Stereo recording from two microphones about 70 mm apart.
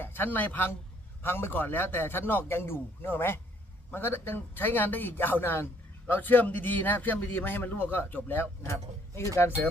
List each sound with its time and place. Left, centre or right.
0.0 s a man's voice: left